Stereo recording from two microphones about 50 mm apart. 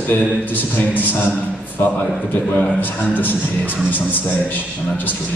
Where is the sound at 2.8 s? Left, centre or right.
Left.